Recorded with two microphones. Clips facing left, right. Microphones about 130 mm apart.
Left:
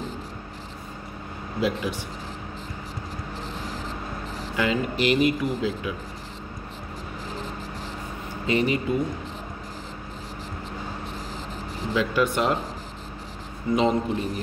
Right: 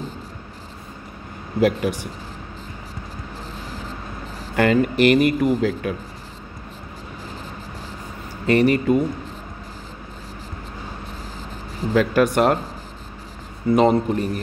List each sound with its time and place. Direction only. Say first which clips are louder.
1.6 s speech: right 7 dB; 50° right (ahead or behind)
4.6 s a man's voice: right 8 dB; 60° right (ahead or behind)
8.5 s a man's voice: right 7 dB; 55° right (ahead or behind)
11.9 s speech: right 6 dB; 50° right (ahead or behind)
13.7 s speech: right 5 dB; 50° right (ahead or behind)